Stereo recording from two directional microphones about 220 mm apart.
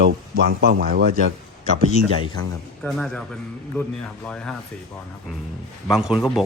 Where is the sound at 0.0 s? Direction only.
50° right (ahead or behind).